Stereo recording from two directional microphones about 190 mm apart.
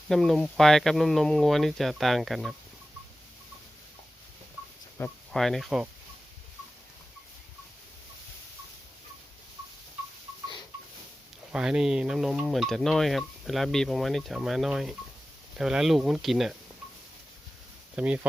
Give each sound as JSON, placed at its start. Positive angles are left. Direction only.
{"t": 0.1, "sound": "speech", "side_deg": 0}
{"t": 4.9, "sound": "speech", "side_deg": 5}
{"t": 11.5, "sound": "speech", "side_deg": -5}
{"t": 17.9, "sound": "speech", "side_deg": -5}